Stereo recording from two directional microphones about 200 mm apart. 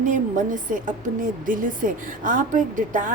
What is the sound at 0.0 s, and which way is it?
A woman's voice, 40° right (ahead or behind).